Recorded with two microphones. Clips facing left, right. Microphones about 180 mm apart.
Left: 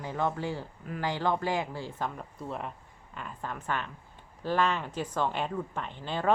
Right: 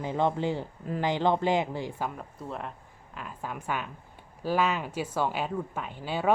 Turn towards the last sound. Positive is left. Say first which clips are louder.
# right 2 dB
turn(degrees=-5)  # may be behind; listen again after turning